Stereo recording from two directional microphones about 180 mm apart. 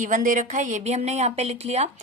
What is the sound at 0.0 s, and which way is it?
Speech, 45° right (ahead or behind).